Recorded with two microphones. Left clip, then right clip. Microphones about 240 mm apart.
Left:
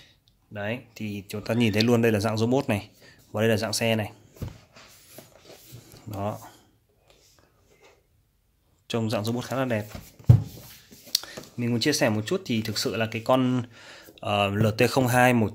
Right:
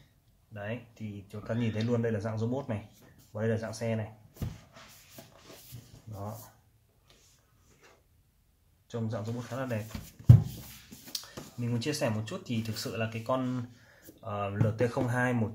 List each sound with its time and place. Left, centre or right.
0.5 s speech: left
6.1 s speech: left
8.8 s speech: left
11.1 s speech: left